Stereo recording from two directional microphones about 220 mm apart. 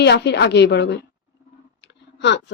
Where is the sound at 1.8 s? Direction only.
50° left (ahead or behind).